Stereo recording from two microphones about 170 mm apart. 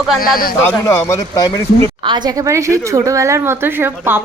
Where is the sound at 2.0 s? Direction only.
25° right (ahead or behind).